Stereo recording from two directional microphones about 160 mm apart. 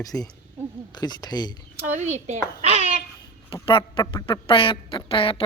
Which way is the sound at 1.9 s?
45° right (ahead or behind).